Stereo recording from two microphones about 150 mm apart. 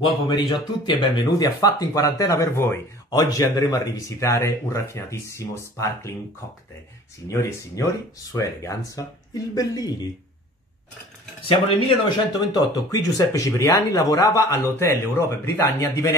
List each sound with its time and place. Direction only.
0.0 s speech: 30° left (ahead or behind)
7.2 s speech: 20° left (ahead or behind)
11.4 s speech: 35° left (ahead or behind); by 16.2 s 20° left (ahead or behind)